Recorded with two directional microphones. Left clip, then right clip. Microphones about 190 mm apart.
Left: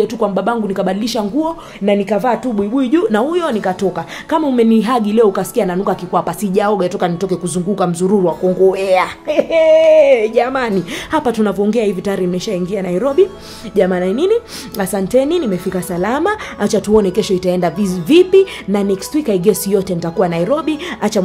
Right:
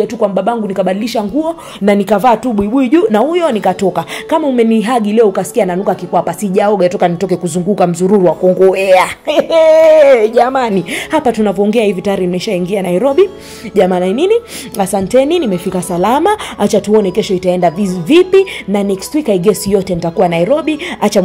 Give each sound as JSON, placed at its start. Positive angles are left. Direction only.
{"t": 0.0, "sound": "speech", "side_deg": 0}
{"t": 1.9, "sound": "speech", "side_deg": -30}
{"t": 4.4, "sound": "a woman's voice", "side_deg": -5}
{"t": 9.8, "sound": "a woman's voice", "side_deg": -5}